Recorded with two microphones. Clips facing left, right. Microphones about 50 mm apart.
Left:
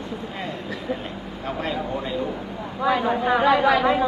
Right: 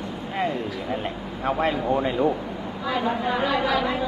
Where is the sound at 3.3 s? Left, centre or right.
Left.